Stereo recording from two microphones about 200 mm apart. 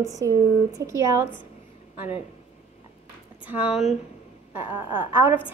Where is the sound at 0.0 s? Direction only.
15° right (ahead or behind).